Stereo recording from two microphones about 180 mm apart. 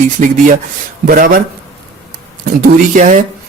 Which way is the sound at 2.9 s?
45° right (ahead or behind).